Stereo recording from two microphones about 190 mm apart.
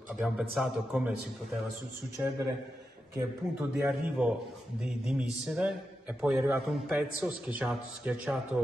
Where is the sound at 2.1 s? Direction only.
15° right (ahead or behind).